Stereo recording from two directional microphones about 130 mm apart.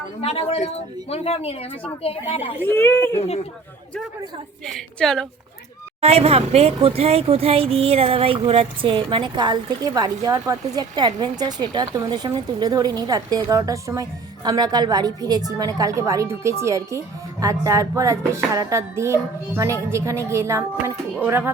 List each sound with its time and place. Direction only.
0.2 s a woman's voice: 50° left (ahead or behind)
2.6 s speech: 15° left (ahead or behind)
4.7 s a woman's voice: 5° left (ahead or behind)
6.0 s a woman's voice: 50° right (ahead or behind); by 21.5 s 15° right (ahead or behind)